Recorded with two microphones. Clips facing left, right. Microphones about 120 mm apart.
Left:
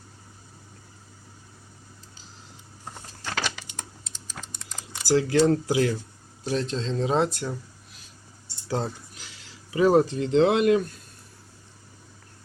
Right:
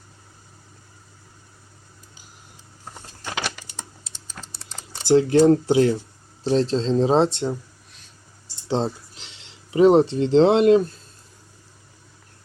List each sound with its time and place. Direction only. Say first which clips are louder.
4.5 s speech: right 1 dB; 30° right (ahead or behind)
8.6 s speech: right 5 dB; 25° right (ahead or behind)